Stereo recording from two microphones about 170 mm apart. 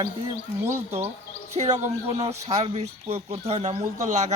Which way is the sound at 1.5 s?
40° right (ahead or behind).